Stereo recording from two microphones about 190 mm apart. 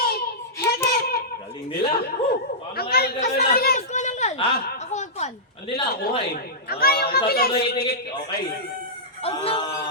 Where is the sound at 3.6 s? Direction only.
45° left (ahead or behind); by 4.6 s 30° left (ahead or behind).